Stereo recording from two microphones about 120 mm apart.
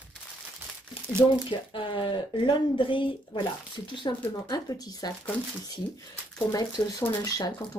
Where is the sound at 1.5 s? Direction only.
45° left (ahead or behind).